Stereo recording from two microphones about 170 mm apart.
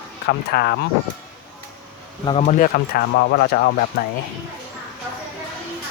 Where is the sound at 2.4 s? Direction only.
50° left (ahead or behind); by 3.6 s 70° left (ahead or behind).